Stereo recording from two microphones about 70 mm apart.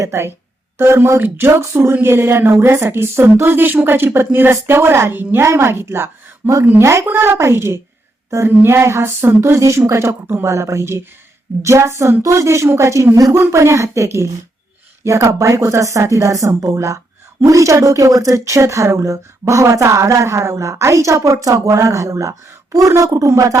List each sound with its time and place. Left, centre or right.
0.0 s speech: right
13.3 s speech: right